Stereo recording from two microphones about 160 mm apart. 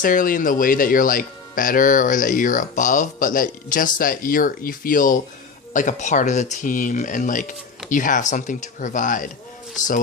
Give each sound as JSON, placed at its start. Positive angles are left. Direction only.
{"t": 0.0, "sound": "speech", "side_deg": 60}